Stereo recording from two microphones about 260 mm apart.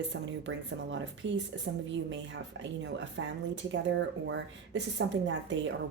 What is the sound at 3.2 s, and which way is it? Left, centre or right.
Speech, right.